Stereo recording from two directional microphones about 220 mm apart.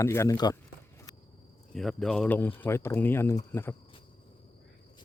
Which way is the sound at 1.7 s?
Centre (ahead or behind).